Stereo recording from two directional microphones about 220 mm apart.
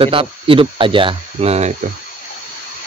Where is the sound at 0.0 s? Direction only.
25° right (ahead or behind).